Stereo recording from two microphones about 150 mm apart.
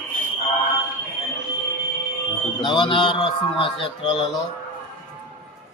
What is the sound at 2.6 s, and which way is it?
A man's voice, 30° left (ahead or behind).